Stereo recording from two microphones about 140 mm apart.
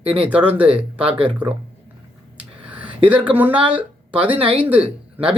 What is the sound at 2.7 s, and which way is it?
Speech, 10° right (ahead or behind).